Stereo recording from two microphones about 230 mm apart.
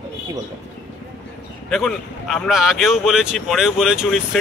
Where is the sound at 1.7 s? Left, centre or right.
Centre.